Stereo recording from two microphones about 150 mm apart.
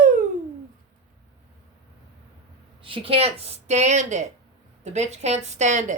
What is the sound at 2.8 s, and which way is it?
A woman's voice, 35° right (ahead or behind).